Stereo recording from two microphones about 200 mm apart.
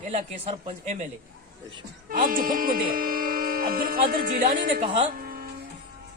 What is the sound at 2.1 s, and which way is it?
Speech, 45° right (ahead or behind).